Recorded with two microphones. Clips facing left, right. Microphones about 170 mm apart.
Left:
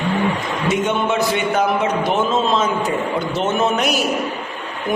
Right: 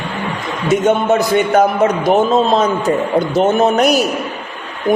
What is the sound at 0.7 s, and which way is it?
A man's voice, 40° right (ahead or behind).